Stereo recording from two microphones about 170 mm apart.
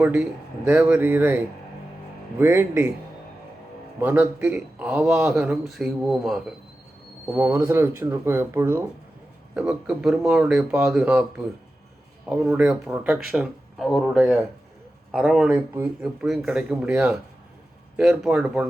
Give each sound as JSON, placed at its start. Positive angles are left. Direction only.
{"t": 0.0, "sound": "speech", "side_deg": -5}
{"t": 4.0, "sound": "speech", "side_deg": -10}
{"t": 7.3, "sound": "speech", "side_deg": -10}